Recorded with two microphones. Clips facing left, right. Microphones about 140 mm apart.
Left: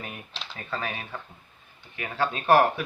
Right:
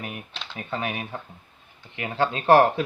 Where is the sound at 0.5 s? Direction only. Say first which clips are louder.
Right 3 dB; 15° right (ahead or behind).